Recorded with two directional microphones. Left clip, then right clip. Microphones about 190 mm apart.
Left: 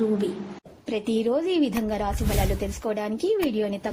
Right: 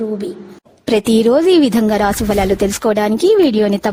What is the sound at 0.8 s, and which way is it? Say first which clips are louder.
Speech: right 13 dB; 70° right (ahead or behind).